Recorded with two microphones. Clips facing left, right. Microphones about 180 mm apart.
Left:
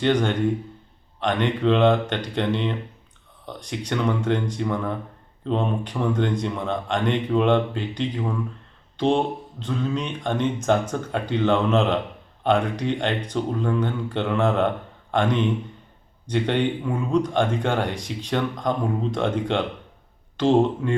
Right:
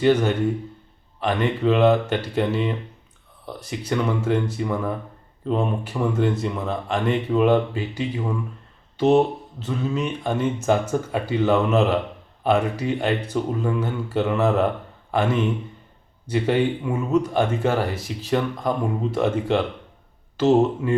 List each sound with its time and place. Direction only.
0.0 s speech: 5° right (ahead or behind)